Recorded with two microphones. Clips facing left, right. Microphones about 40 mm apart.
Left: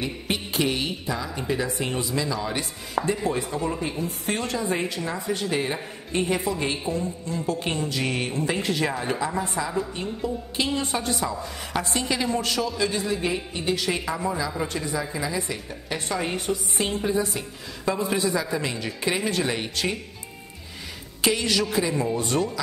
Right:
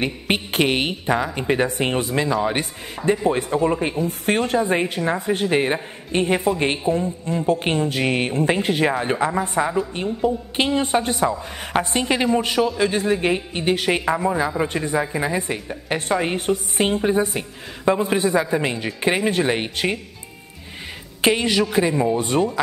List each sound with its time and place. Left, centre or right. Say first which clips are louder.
0.0 s a woman's voice: right 6 dB; right
9.5 s a woman's voice: right 6 dB; right
12.4 s speech: right 6 dB; right
12.6 s a woman's voice: right 6 dB; right
21.2 s a woman's voice: right 5 dB; right